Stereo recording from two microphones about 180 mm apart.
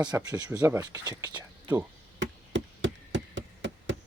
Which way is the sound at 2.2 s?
90° right.